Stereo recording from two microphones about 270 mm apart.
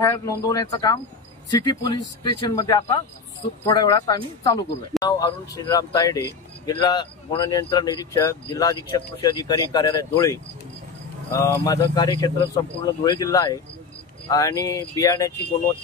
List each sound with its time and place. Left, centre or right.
0.0 s speech: centre